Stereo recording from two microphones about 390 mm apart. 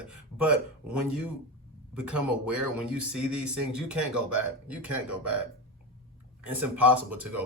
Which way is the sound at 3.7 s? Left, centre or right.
Centre.